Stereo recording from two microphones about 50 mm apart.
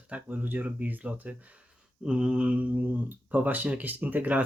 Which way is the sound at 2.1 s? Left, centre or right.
Centre.